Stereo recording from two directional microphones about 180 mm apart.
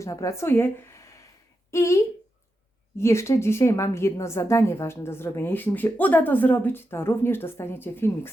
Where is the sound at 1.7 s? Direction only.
15° left (ahead or behind).